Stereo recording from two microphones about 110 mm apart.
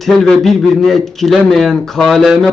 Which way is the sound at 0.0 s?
Centre (ahead or behind).